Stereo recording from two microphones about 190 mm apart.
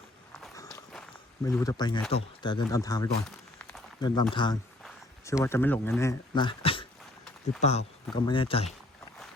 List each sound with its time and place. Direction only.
1.5 s speech: 20° left (ahead or behind)